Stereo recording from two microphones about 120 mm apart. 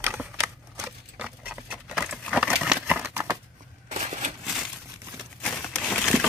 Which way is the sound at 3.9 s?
65° right (ahead or behind).